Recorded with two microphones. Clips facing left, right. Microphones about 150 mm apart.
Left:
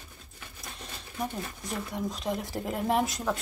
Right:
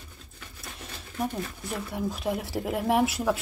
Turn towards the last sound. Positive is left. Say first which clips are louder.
# right 3 dB
turn(degrees=-5)  # may be behind; listen again after turning